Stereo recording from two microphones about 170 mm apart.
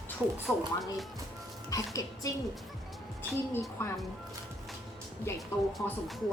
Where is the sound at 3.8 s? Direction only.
15° left (ahead or behind).